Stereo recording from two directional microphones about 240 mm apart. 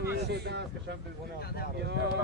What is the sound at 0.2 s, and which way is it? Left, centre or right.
Speech, right.